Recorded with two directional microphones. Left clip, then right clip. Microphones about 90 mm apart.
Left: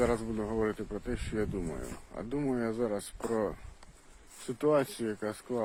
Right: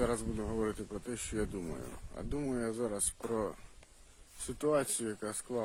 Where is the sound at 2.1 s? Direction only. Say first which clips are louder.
Left 4 dB; 30° right (ahead or behind).